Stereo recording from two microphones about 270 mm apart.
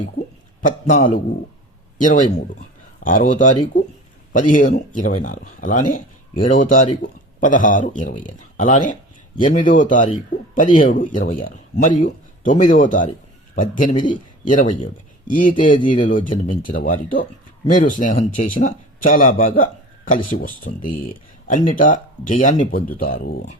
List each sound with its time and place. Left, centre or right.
0.6 s speech: left